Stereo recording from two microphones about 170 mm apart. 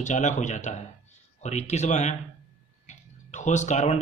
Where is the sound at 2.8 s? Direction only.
45° left (ahead or behind).